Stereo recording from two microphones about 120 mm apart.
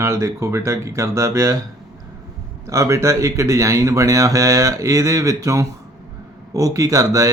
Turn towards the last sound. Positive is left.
turn(degrees=-25)  # may be behind; listen again after turning